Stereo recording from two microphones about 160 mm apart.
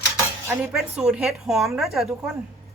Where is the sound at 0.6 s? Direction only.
Centre (ahead or behind).